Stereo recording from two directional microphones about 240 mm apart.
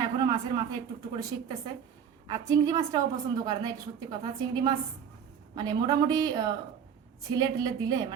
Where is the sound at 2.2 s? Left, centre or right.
Centre.